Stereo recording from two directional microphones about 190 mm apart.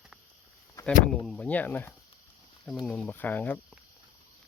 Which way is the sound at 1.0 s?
5° left (ahead or behind).